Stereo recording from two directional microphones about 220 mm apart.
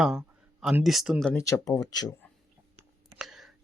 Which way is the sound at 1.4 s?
15° left (ahead or behind).